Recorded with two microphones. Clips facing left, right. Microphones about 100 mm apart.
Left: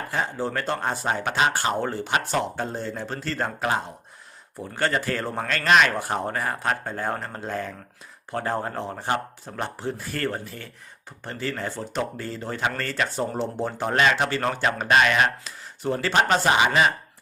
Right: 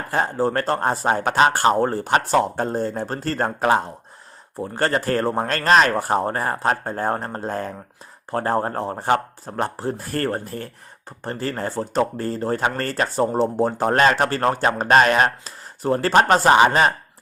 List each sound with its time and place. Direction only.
0.1 s speech: 45° right (ahead or behind)